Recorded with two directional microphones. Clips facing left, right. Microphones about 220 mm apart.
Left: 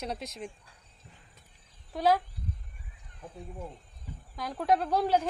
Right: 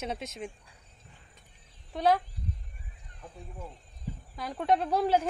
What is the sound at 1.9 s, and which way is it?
Speech, 5° left (ahead or behind).